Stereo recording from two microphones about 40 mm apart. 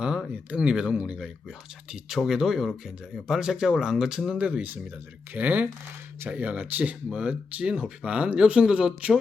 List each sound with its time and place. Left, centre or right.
0.5 s speech: right
4.4 s speech: right
5.3 s speech: right
7.1 s speech: right